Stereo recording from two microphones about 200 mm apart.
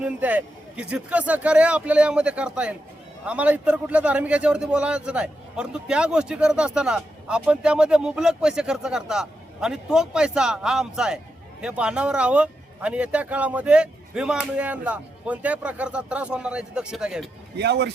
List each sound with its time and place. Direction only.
0.0 s a man's voice: 5° right (ahead or behind)
17.6 s speech: 55° right (ahead or behind)